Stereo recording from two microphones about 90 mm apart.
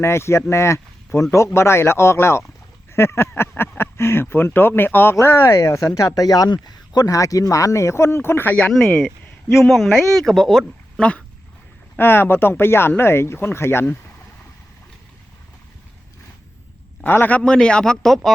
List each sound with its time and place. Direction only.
0.0 s speech: 30° left (ahead or behind)
9.5 s speech: centre (ahead or behind)
11.9 s speech: 25° left (ahead or behind)
17.0 s a man's voice: 20° left (ahead or behind)
17.4 s speech: 10° left (ahead or behind)